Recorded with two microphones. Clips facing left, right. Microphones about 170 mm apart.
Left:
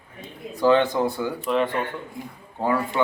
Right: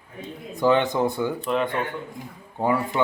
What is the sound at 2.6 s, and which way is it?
Speech, 15° right (ahead or behind).